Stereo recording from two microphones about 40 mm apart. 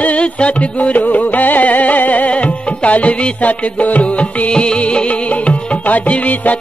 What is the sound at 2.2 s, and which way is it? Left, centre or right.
Music, left.